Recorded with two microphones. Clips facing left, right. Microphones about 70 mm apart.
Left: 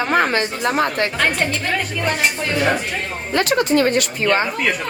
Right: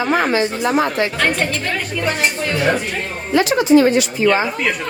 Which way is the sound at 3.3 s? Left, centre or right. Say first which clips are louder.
Right 4 dB; left.